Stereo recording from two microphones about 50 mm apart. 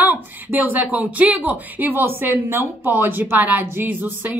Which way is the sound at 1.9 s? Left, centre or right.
Right.